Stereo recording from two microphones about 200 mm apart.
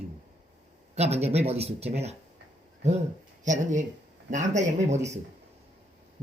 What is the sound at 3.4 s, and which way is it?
Speech, 40° right (ahead or behind).